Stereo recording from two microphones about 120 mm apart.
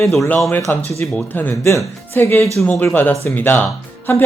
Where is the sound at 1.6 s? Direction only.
25° left (ahead or behind).